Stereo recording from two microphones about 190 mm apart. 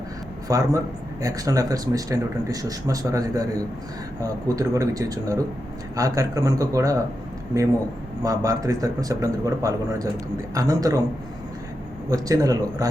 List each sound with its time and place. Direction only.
0.4 s speech: 15° right (ahead or behind)
12.1 s speech: 20° right (ahead or behind)